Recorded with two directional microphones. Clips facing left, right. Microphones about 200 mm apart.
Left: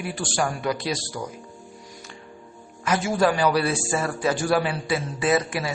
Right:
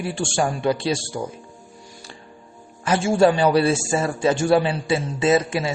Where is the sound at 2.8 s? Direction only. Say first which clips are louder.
Right 5 dB; 30° right (ahead or behind).